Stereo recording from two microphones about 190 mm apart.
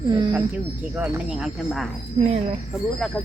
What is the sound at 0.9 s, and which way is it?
Speech, 10° right (ahead or behind).